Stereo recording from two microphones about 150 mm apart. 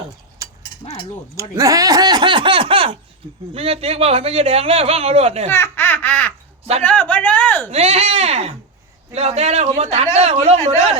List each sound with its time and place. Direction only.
0.4 s a sound: 25° right (ahead or behind)
1.4 s speech: 20° right (ahead or behind); by 5.5 s 45° right (ahead or behind)
5.5 s speech: 15° left (ahead or behind)
7.7 s a man's voice: 45° right (ahead or behind)